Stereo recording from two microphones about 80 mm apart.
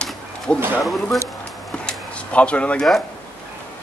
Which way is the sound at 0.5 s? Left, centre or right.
Right.